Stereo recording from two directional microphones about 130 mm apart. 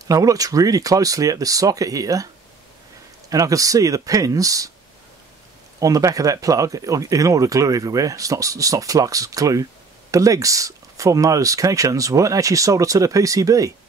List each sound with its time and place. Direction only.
0.0 s speech: 25° right (ahead or behind)
3.3 s speech: 25° right (ahead or behind)
5.8 s speech: 25° right (ahead or behind)